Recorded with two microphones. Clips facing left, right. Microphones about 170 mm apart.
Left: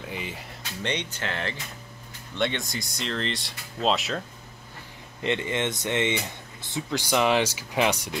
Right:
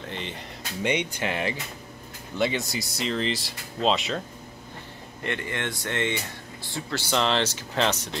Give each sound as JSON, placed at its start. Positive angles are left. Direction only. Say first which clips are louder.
{"t": 0.0, "sound": "speech", "louder": "even", "side_deg": 5}
{"t": 0.8, "sound": "speech", "louder": "right 4 dB", "side_deg": -10}
{"t": 5.2, "sound": "speech", "louder": "left 4 dB", "side_deg": 20}